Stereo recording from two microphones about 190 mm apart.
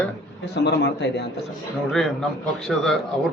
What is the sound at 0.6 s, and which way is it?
Speech, 65° left (ahead or behind).